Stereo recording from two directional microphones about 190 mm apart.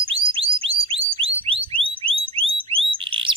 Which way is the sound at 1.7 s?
30° right (ahead or behind).